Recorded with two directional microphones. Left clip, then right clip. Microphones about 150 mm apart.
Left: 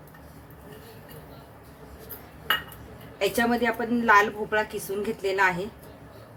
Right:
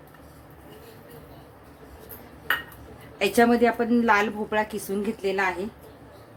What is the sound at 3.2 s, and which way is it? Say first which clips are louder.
A woman's voice: right 4 dB; 50° right (ahead or behind).